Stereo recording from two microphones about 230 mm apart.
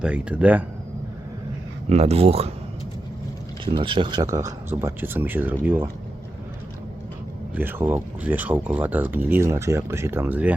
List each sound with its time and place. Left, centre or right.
0.0 s speech: centre
1.9 s speech: right
3.8 s speech: right
7.5 s speech: centre